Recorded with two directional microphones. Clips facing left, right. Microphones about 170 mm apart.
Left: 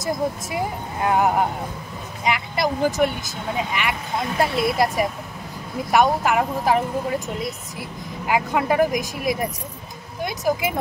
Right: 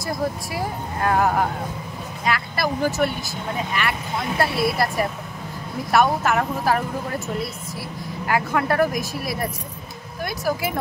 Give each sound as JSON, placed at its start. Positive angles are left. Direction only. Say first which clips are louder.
{"t": 0.0, "sound": "speech", "louder": "left 1 dB", "side_deg": 20}
{"t": 8.3, "sound": "speech", "louder": "left 1 dB", "side_deg": 15}